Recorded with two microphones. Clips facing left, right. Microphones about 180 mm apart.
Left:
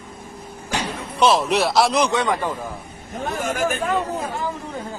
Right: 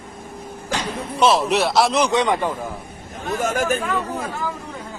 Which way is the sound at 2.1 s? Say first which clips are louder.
Right 2 dB; 20° right (ahead or behind).